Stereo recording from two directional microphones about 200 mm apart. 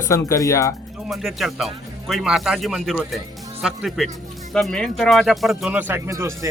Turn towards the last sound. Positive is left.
turn(degrees=-15)  # may be behind; listen again after turning